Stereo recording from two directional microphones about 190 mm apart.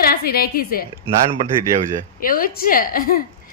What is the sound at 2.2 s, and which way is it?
Speech, 50° left (ahead or behind).